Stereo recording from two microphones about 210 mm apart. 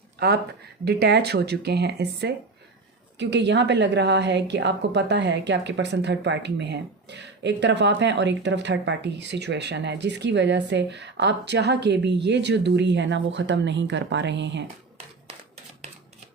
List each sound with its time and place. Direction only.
0.9 s a woman's voice: 55° right (ahead or behind)